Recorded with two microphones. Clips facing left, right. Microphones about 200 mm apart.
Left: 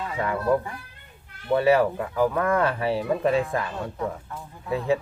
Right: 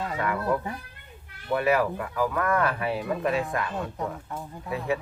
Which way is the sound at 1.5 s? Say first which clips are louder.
Left 4 dB; 30° left (ahead or behind).